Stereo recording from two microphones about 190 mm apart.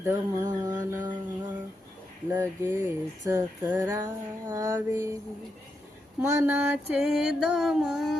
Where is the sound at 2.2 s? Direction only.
10° right (ahead or behind).